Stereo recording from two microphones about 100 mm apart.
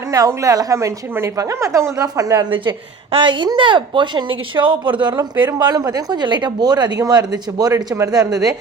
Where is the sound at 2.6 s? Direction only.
55° right (ahead or behind).